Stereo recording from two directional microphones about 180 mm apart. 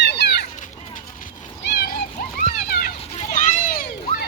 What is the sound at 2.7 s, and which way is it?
Children playing, 55° left (ahead or behind).